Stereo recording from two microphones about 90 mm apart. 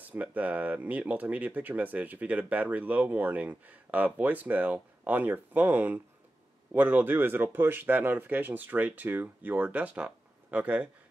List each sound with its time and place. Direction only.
0.0 s speech: 20° right (ahead or behind)